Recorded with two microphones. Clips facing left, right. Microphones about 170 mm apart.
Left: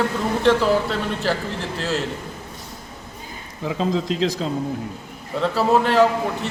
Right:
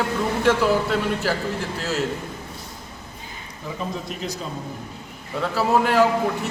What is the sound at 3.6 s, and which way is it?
Speech, 90° left.